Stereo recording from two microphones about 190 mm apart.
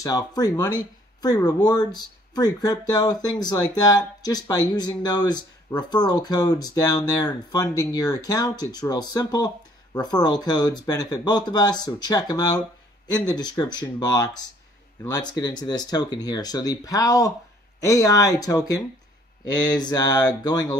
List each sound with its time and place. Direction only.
0.0 s speech: 20° left (ahead or behind)